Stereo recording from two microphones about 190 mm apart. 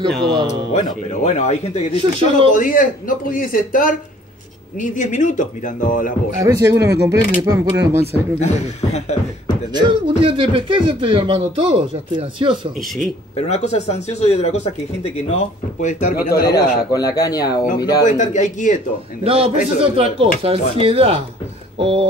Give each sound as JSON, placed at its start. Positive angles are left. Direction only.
{"t": 0.1, "sound": "speech", "side_deg": 0}
{"t": 1.2, "sound": "a man's voice", "side_deg": 35}
{"t": 6.4, "sound": "speech", "side_deg": -15}
{"t": 6.7, "sound": "speech", "side_deg": -65}
{"t": 7.1, "sound": "speech", "side_deg": -15}
{"t": 8.1, "sound": "a man's voice", "side_deg": 35}
{"t": 9.7, "sound": "speech", "side_deg": -25}
{"t": 12.7, "sound": "speech", "side_deg": 0}
{"t": 13.4, "sound": "a man's voice", "side_deg": 35}
{"t": 16.3, "sound": "speech", "side_deg": 55}
{"t": 16.5, "sound": "speech", "side_deg": 20}
{"t": 18.0, "sound": "a man's voice", "side_deg": 40}
{"t": 19.2, "sound": "speech", "side_deg": -30}